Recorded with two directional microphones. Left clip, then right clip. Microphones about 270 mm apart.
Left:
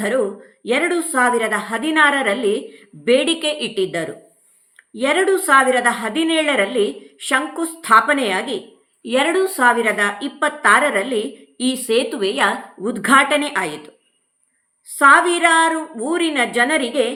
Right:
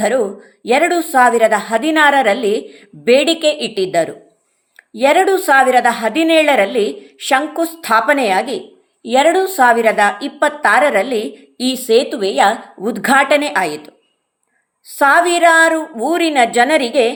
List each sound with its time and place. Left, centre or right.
0.0 s a woman's voice: centre